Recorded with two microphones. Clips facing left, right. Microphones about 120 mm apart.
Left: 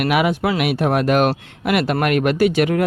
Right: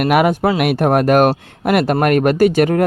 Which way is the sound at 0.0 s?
45° right (ahead or behind).